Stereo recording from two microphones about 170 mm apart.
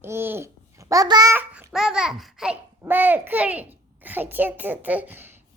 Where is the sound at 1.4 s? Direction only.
10° right (ahead or behind).